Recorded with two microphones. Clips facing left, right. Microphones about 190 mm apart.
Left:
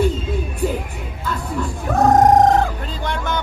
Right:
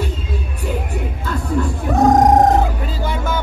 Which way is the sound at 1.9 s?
Centre (ahead or behind).